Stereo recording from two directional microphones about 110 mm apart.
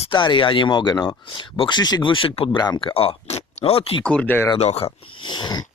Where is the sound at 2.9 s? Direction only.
60° left (ahead or behind).